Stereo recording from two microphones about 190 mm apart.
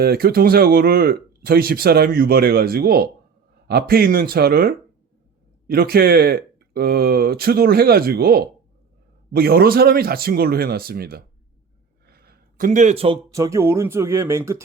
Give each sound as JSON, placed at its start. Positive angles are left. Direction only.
{"t": 0.0, "sound": "speech", "side_deg": -55}
{"t": 12.0, "sound": "a sound", "side_deg": -55}
{"t": 13.3, "sound": "speech", "side_deg": -15}